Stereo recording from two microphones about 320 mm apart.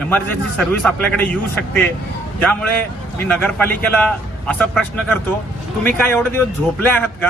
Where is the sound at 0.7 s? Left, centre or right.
Centre.